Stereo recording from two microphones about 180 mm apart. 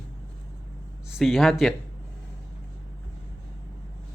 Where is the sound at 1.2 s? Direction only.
Centre (ahead or behind).